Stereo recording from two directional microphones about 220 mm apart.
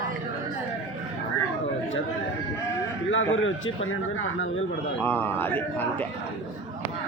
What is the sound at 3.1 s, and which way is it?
A man's voice, 65° left (ahead or behind).